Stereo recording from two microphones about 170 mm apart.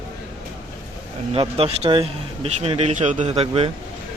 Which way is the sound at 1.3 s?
35° right (ahead or behind).